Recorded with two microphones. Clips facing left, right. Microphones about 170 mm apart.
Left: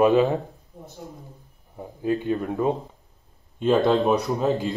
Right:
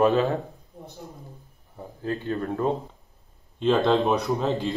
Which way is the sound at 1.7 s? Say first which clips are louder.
Left 5 dB; 15° left (ahead or behind).